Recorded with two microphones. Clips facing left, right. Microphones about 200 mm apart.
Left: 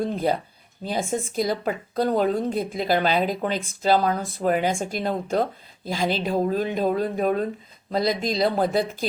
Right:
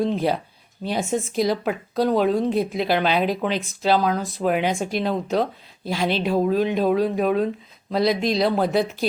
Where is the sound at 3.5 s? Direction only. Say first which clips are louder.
Right 2 dB; 50° left (ahead or behind).